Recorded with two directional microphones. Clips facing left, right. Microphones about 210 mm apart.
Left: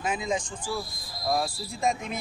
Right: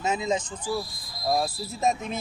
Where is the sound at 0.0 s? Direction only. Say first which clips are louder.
Right 3 dB; 25° right (ahead or behind).